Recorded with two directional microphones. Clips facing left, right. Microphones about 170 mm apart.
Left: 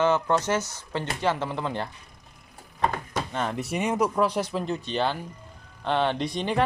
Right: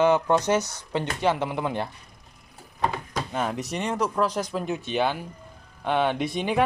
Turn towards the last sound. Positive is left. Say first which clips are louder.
# right 1 dB
turn(degrees=-10)  # may be behind; listen again after turning